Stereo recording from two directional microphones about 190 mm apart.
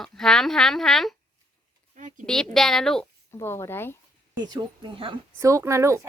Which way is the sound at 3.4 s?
10° left (ahead or behind).